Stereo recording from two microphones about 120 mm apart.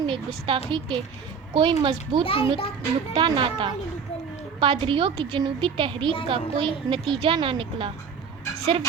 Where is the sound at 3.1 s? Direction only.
45° right (ahead or behind).